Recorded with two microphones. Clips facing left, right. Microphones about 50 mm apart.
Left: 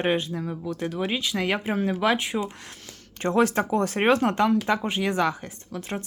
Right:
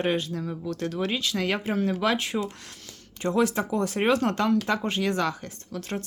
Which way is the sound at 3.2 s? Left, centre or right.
Left.